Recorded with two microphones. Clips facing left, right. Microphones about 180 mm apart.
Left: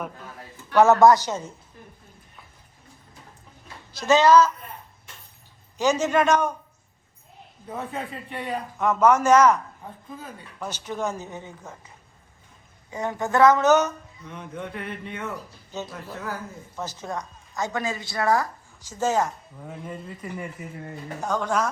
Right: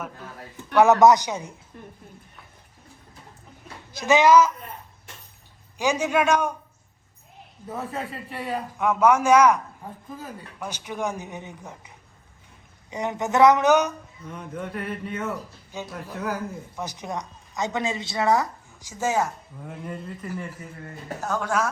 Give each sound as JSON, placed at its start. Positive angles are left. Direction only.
{"t": 0.9, "sound": "speech", "side_deg": -20}
{"t": 4.0, "sound": "speech", "side_deg": -15}
{"t": 5.7, "sound": "speech", "side_deg": -10}
{"t": 7.7, "sound": "a man's voice", "side_deg": 0}
{"t": 12.9, "sound": "speech", "side_deg": -20}
{"t": 14.3, "sound": "a man's voice", "side_deg": 0}
{"t": 19.6, "sound": "a man's voice", "side_deg": 5}